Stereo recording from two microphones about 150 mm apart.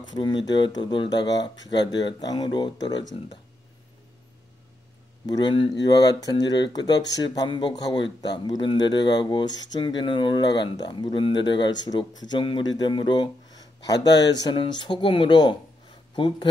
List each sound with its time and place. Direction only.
0.1 s speech: 30° left (ahead or behind)
5.2 s speech: 30° left (ahead or behind)